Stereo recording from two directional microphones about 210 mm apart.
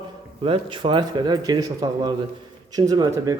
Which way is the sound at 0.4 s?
25° right (ahead or behind).